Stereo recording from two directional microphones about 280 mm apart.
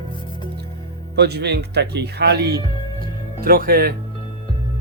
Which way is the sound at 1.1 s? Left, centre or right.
Right.